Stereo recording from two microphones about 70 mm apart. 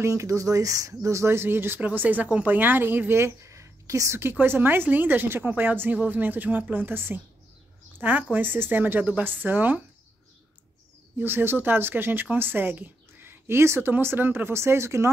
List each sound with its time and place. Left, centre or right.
0.0 s a woman's voice: right
4.2 s a woman's voice: right
11.1 s speech: right